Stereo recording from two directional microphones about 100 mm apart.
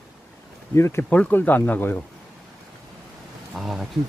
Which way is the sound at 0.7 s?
25° left (ahead or behind).